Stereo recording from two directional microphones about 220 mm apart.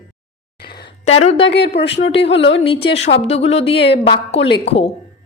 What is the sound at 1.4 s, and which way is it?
Speech, 50° left (ahead or behind).